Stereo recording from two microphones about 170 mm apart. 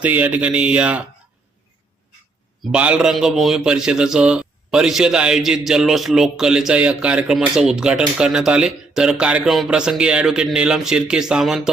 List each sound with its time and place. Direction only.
0.0 s speech: 10° right (ahead or behind)
2.7 s a man's voice: 5° right (ahead or behind)